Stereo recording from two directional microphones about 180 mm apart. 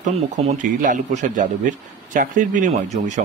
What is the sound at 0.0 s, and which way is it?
Speech, 40° right (ahead or behind).